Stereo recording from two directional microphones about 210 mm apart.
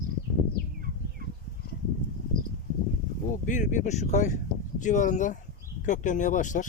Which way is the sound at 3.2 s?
40° left (ahead or behind).